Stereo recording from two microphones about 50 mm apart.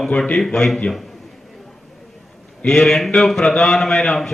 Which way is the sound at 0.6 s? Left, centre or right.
Centre.